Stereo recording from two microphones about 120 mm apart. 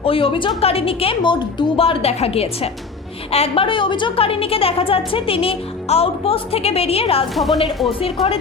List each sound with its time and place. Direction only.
0.0 s a woman's voice: 50° left (ahead or behind)
7.3 s speech: centre (ahead or behind)
8.0 s a woman's voice: 55° left (ahead or behind)